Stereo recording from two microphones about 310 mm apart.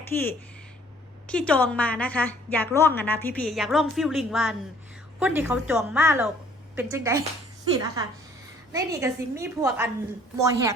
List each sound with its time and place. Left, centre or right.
0.1 s a woman's voice: centre